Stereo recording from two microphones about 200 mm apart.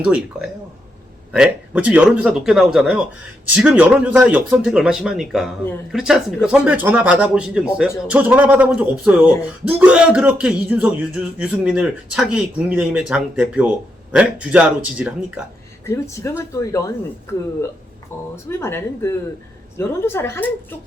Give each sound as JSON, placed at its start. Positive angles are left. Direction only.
{"t": 0.0, "sound": "a man's voice", "side_deg": -5}
{"t": 16.4, "sound": "speech", "side_deg": 15}
{"t": 18.6, "sound": "speech", "side_deg": 15}